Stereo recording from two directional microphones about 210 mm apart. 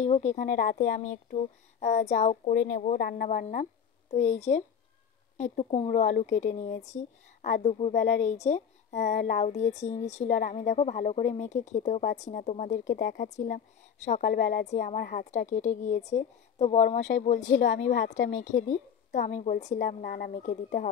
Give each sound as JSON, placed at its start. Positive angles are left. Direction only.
{"t": 0.0, "sound": "a woman's voice", "side_deg": 35}